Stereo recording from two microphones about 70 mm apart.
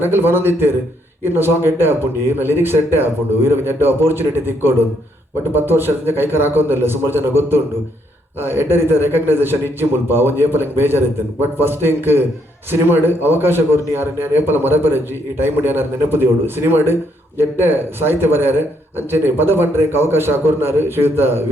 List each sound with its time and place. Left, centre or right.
0.0 s a man's voice: right